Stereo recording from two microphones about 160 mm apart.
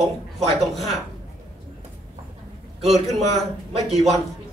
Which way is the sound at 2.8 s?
40° right (ahead or behind).